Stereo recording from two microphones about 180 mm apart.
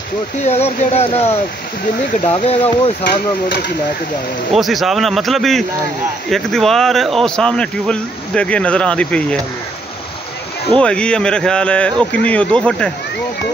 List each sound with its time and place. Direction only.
0.5 s speech: 35° left (ahead or behind)
3.0 s speech: 65° left (ahead or behind)
4.5 s speech: centre (ahead or behind)
10.8 s speech: 5° left (ahead or behind)